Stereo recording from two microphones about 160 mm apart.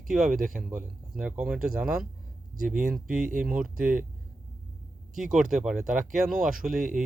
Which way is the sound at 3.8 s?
55° right (ahead or behind).